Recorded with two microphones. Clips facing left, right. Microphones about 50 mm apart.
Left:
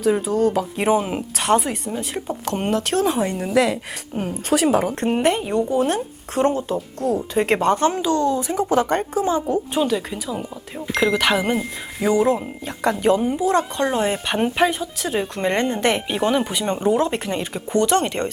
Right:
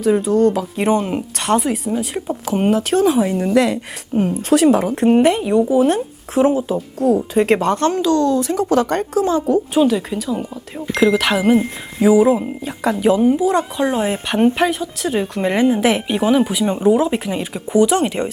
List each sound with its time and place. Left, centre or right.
0.0 s speech: centre